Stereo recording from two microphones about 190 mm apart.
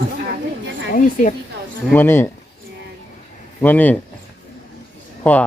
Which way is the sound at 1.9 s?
10° left (ahead or behind).